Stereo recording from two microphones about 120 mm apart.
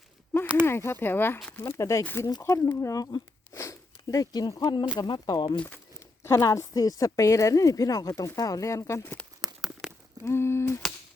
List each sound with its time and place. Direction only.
0.6 s a woman's voice: 20° left (ahead or behind)
9.4 s a sound: 5° right (ahead or behind)
10.2 s a woman's voice: 20° left (ahead or behind)